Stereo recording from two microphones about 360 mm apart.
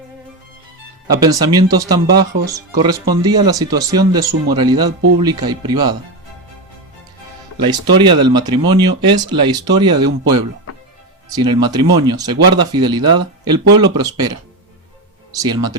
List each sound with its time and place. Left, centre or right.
1.1 s speech: centre
7.5 s speech: centre
15.3 s speech: centre